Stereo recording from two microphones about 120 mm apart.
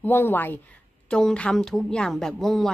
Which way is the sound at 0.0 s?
15° left (ahead or behind).